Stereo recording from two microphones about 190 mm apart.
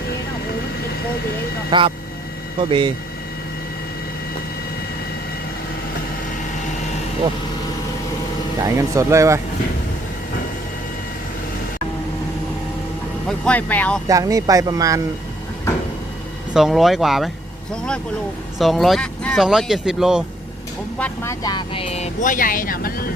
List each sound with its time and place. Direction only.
1.7 s speech: 25° right (ahead or behind)
8.6 s speech: 15° right (ahead or behind)
13.2 s speech: 5° left (ahead or behind)
14.1 s speech: 15° right (ahead or behind)
16.6 s speech: centre (ahead or behind)
18.6 s speech: centre (ahead or behind)
21.0 s speech: 15° left (ahead or behind); by 23.0 s 50° left (ahead or behind)